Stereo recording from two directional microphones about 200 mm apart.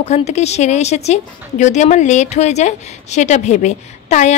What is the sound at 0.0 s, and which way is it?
A woman's voice, 35° left (ahead or behind).